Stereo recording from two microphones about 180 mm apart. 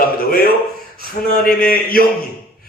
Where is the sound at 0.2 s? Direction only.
55° left (ahead or behind).